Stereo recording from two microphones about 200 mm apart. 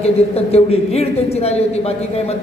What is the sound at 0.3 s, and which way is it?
A man's voice, 30° left (ahead or behind).